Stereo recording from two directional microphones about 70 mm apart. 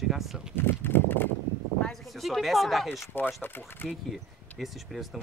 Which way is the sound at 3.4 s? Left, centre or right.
Left.